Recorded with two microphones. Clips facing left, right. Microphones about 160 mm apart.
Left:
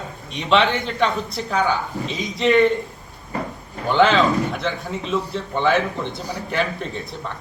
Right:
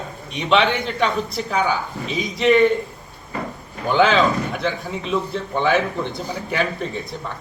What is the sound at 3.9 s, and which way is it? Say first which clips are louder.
A man's voice: even; centre (ahead or behind).